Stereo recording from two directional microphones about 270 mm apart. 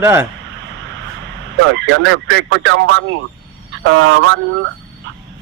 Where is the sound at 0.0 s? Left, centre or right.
Centre.